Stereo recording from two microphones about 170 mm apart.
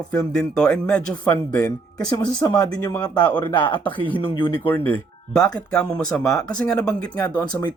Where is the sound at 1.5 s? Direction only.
20° left (ahead or behind).